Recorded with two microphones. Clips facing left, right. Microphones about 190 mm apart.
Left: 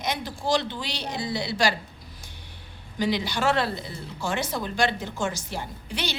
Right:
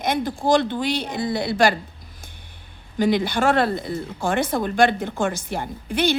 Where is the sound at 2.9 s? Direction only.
50° right (ahead or behind).